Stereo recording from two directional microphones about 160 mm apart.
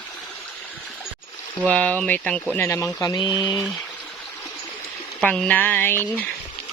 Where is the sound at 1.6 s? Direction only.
10° left (ahead or behind); by 3.6 s 30° left (ahead or behind).